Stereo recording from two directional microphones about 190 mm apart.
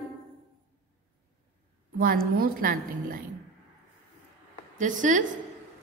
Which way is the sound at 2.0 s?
50° right (ahead or behind).